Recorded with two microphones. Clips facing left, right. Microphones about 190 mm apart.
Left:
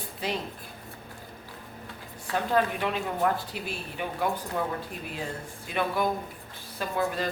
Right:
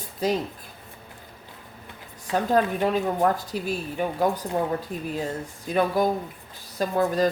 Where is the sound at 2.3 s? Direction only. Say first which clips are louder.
Right 4 dB; 40° right (ahead or behind).